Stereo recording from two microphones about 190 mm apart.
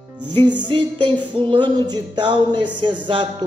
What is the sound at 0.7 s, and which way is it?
Speech, 25° right (ahead or behind).